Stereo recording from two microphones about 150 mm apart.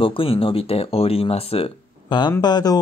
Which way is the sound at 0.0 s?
35° left (ahead or behind).